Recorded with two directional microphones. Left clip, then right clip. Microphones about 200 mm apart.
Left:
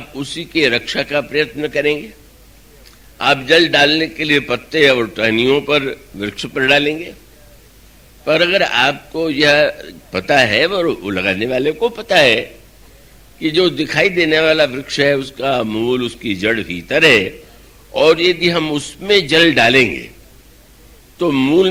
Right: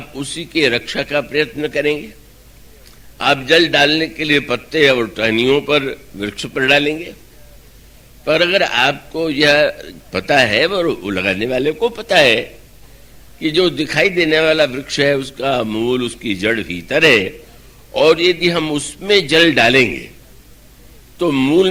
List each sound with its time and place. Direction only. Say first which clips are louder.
0.0 s a man's voice: left 1 dB; 40° left (ahead or behind)
3.2 s a man's voice: left 1 dB; 40° left (ahead or behind)
8.2 s a man's voice: even; 40° left (ahead or behind)
21.2 s a man's voice: even; 40° left (ahead or behind)